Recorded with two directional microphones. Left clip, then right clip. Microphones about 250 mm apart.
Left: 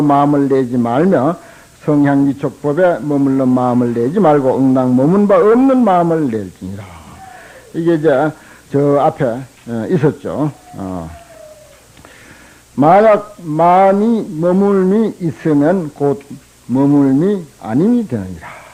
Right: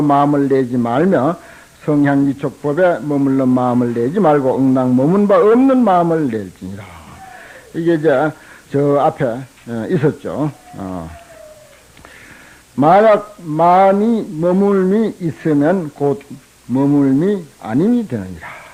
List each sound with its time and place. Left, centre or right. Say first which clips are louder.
0.0 s a man's voice: left 1 dB; left
12.7 s a man's voice: left 1 dB; left